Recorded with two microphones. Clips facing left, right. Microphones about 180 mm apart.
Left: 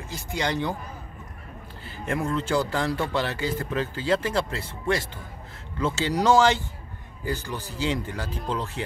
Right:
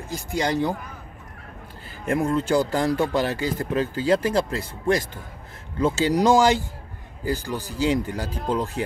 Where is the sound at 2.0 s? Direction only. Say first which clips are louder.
Right 5 dB; 35° right (ahead or behind).